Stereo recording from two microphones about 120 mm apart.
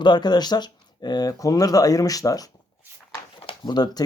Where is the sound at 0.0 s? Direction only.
35° left (ahead or behind).